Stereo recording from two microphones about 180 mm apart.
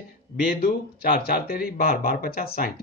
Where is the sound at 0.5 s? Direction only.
55° left (ahead or behind).